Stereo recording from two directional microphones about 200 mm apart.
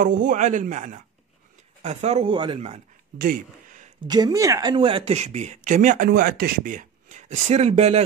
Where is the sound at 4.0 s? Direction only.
20° right (ahead or behind).